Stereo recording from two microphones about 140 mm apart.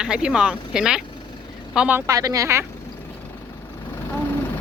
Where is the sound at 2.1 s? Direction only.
25° right (ahead or behind).